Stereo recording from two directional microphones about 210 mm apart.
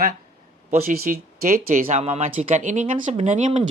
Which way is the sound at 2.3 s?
35° right (ahead or behind).